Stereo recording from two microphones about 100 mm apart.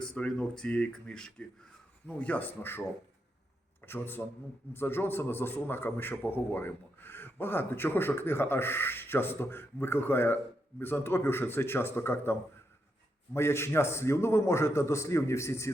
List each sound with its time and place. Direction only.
0.0 s speech: 10° left (ahead or behind)
3.8 s a man's voice: 20° left (ahead or behind)